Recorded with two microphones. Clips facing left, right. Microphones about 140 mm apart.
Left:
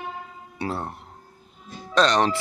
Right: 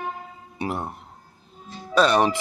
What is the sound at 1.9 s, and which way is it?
Speech, 10° right (ahead or behind).